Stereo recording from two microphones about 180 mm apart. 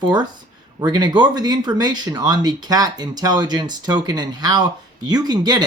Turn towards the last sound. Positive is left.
turn(degrees=-25)  # may be behind; listen again after turning